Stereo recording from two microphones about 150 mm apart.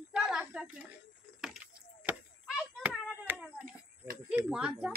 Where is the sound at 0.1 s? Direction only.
5° right (ahead or behind).